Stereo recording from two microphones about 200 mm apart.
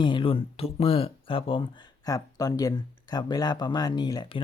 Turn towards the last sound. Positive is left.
turn(degrees=25)  # may be behind; listen again after turning